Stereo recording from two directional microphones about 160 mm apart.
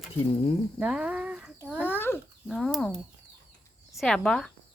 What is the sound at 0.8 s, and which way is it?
Speech, 5° right (ahead or behind).